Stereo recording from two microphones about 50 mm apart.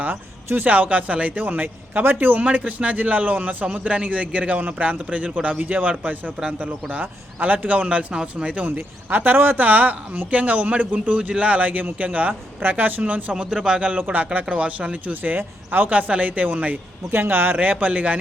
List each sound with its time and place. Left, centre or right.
0.4 s a man's voice: right
6.9 s speech: right
7.9 s a man's voice: centre
8.4 s speech: right
13.5 s a man's voice: centre; by 16.7 s right
17.1 s speech: right